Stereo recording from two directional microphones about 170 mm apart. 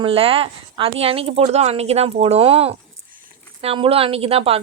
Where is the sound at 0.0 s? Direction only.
35° right (ahead or behind).